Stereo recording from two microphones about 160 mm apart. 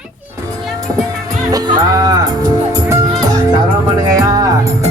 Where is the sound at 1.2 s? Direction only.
25° right (ahead or behind).